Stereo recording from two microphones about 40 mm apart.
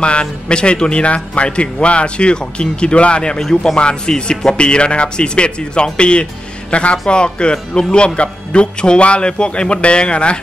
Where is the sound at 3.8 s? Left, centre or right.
Left.